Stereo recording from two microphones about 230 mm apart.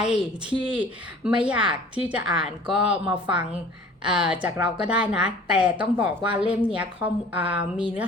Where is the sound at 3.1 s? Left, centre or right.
Right.